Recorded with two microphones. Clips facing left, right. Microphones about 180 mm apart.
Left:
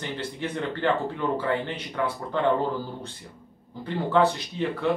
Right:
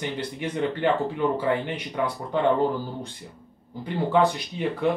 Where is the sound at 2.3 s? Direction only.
15° right (ahead or behind).